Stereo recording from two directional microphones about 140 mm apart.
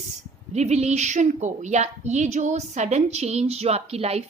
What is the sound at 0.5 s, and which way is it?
A woman's voice, 50° right (ahead or behind).